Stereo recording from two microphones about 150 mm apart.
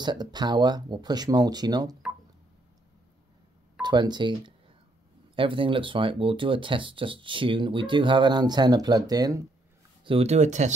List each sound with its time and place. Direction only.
0.0 s speech: 30° right (ahead or behind)
3.8 s speech: 30° right (ahead or behind)
10.0 s speech: 45° right (ahead or behind)